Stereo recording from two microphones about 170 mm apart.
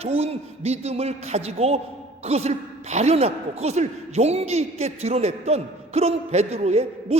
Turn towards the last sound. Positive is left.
turn(degrees=-40)  # may be behind; listen again after turning